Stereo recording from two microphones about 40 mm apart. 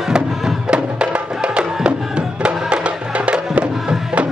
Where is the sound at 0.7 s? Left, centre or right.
Right.